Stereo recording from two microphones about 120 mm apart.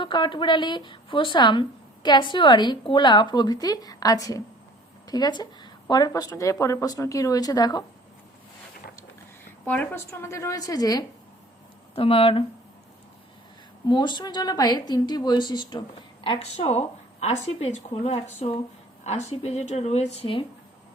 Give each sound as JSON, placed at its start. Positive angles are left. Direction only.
{"t": 0.0, "sound": "a woman's voice", "side_deg": 40}
{"t": 9.6, "sound": "a woman's voice", "side_deg": 20}
{"t": 11.9, "sound": "speech", "side_deg": 50}
{"t": 13.8, "sound": "a woman's voice", "side_deg": 40}
{"t": 16.4, "sound": "speech", "side_deg": 60}